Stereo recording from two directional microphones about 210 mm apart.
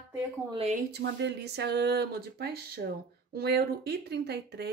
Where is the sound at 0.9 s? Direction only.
55° right (ahead or behind).